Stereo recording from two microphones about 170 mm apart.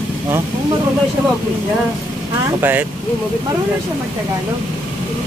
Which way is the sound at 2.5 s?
10° right (ahead or behind).